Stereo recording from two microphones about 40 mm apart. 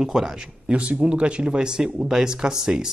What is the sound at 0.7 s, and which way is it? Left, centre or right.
Speech, right.